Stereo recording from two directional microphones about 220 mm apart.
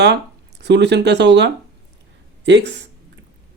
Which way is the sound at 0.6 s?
50° right (ahead or behind).